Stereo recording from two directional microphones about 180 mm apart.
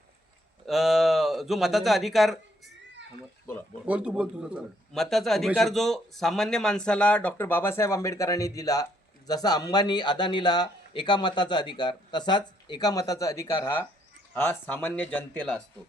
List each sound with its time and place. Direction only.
0.6 s speech: centre (ahead or behind)
3.8 s a man's voice: 5° right (ahead or behind)